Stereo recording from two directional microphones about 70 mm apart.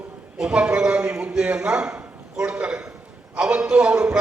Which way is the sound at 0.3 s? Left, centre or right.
Centre.